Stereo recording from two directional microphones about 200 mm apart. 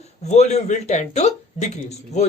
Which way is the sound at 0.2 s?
35° left (ahead or behind).